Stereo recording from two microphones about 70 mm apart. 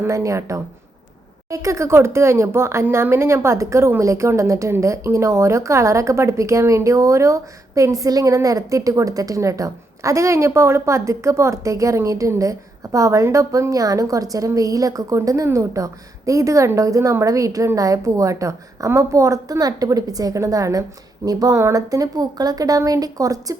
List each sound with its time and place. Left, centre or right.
0.1 s a woman's voice: right